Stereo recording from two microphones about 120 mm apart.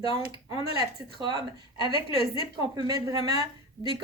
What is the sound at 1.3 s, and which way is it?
Speech, 40° left (ahead or behind).